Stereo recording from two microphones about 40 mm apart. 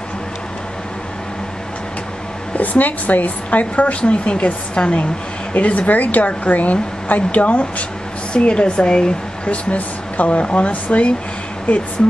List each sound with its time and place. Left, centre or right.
2.5 s a woman's voice: left
8.3 s speech: left
9.5 s a woman's voice: left